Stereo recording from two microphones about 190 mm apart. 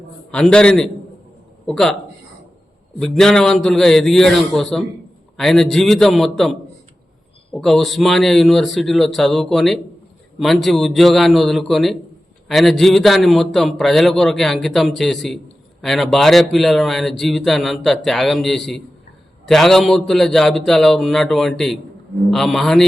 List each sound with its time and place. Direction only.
0.3 s speech: 5° left (ahead or behind)
3.0 s speech: 5° left (ahead or behind)